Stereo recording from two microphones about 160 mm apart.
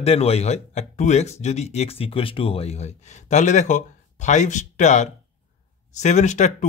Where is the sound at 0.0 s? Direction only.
40° left (ahead or behind).